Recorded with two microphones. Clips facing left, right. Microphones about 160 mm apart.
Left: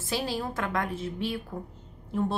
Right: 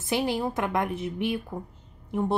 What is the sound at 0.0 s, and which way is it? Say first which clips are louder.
A woman's voice: right 4 dB; 20° right (ahead or behind).